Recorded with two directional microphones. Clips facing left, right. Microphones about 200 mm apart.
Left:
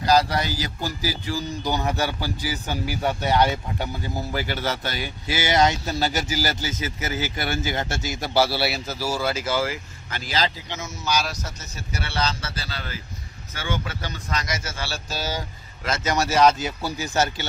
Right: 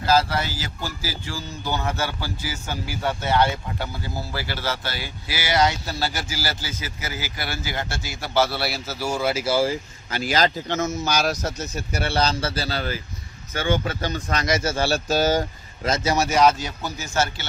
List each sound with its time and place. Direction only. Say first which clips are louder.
0.0 s speech: left 1 dB; 15° left (ahead or behind)
9.3 s speech: right 3 dB; 10° right (ahead or behind)
10.3 s a man's voice: right 4 dB; 50° right (ahead or behind)
13.5 s speech: right 6 dB; 45° right (ahead or behind)
14.4 s a man's voice: right 9 dB; 35° right (ahead or behind)
14.8 s speech: right 10 dB; 50° right (ahead or behind)
16.0 s speech: even; centre (ahead or behind)
16.6 s speech: left 2 dB; 5° left (ahead or behind)
17.0 s speech: left 1 dB; 15° left (ahead or behind)